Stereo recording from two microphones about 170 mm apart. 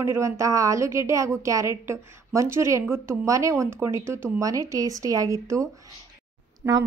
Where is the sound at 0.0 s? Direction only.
15° right (ahead or behind).